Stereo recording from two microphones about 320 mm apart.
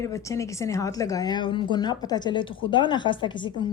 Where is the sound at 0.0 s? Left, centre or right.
Centre.